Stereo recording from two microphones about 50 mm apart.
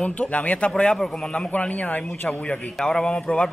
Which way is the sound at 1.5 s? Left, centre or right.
Left.